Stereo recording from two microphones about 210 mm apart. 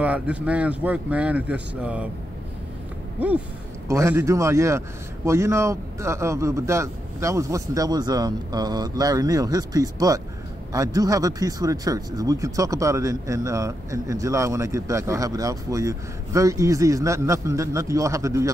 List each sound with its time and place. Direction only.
0.0 s speech: 5° right (ahead or behind)
3.8 s speech: 15° right (ahead or behind)